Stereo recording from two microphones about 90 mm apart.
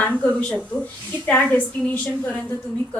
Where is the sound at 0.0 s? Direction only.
15° left (ahead or behind).